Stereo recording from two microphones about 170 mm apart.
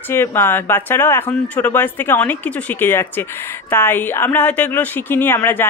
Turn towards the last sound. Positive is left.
turn(degrees=10)  # may be behind; listen again after turning